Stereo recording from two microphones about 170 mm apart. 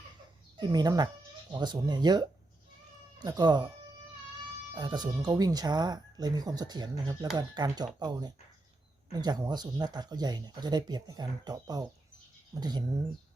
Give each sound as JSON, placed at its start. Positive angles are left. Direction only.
{"t": 0.6, "sound": "speech", "side_deg": -25}
{"t": 4.7, "sound": "speech", "side_deg": -25}